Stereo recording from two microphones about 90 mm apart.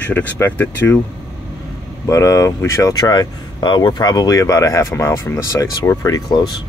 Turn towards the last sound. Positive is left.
turn(degrees=50)  # may be behind; listen again after turning